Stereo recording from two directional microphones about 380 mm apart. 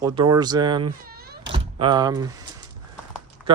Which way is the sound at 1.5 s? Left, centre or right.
Centre.